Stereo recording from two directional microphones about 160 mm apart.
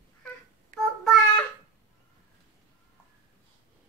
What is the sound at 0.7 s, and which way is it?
Child singing, 55° right (ahead or behind).